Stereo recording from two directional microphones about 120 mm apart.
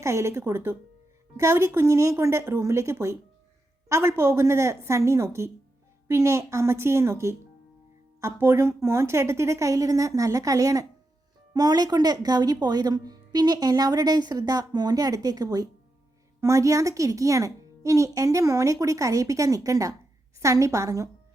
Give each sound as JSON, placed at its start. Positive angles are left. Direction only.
{"t": 0.0, "sound": "a woman's voice", "side_deg": -25}